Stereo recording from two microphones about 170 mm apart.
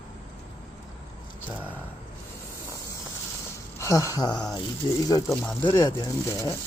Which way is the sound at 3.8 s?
15° left (ahead or behind).